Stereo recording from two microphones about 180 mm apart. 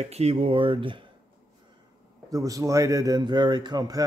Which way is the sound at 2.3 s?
20° right (ahead or behind).